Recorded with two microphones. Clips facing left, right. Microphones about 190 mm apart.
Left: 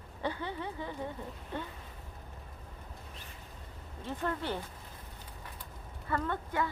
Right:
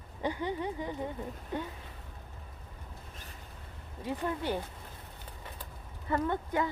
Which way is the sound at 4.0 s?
10° right (ahead or behind).